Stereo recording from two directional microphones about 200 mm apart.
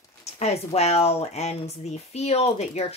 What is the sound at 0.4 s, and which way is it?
Speech, 30° left (ahead or behind).